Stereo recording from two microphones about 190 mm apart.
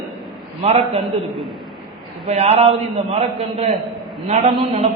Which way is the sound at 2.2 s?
35° right (ahead or behind).